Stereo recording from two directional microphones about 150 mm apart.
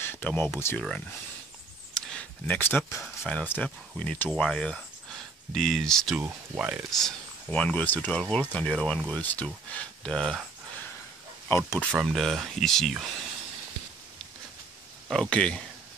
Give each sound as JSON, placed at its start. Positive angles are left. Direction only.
{"t": 0.0, "sound": "a sound", "side_deg": 10}
{"t": 0.6, "sound": "speech", "side_deg": 15}
{"t": 2.0, "sound": "a sound", "side_deg": 10}
{"t": 3.0, "sound": "speech", "side_deg": 10}
{"t": 6.2, "sound": "speech", "side_deg": -10}
{"t": 6.9, "sound": "speech", "side_deg": 5}
{"t": 11.4, "sound": "speech", "side_deg": 15}
{"t": 11.9, "sound": "speech", "side_deg": 0}
{"t": 15.0, "sound": "speech", "side_deg": 5}